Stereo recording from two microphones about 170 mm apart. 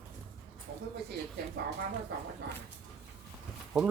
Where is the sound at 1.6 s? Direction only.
80° right.